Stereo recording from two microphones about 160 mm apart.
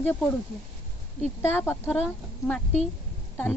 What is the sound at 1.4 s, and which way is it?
A man's voice, 15° left (ahead or behind).